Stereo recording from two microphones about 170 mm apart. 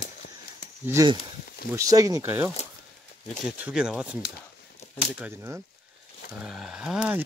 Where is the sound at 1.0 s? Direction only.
20° right (ahead or behind).